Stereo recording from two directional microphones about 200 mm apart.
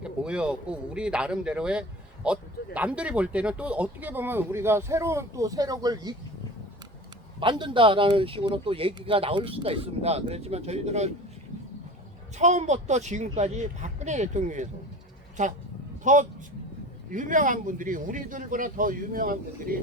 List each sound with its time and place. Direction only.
0.0 s speech: 5° right (ahead or behind)
7.3 s speech: 25° right (ahead or behind)
12.4 s speech: 35° right (ahead or behind)
16.1 s speech: 40° right (ahead or behind)